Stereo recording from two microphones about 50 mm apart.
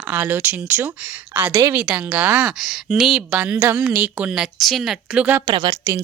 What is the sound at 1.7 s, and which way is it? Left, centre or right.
Speech, right.